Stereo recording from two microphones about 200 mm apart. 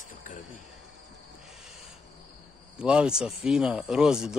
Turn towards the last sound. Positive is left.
turn(degrees=-5)  # may be behind; listen again after turning